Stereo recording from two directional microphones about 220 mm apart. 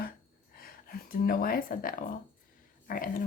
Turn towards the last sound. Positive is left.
turn(degrees=40)  # may be behind; listen again after turning